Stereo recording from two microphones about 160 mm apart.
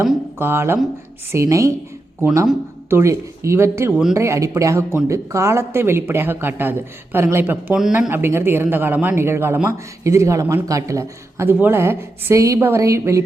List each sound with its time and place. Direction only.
0.3 s a man's voice: 15° right (ahead or behind)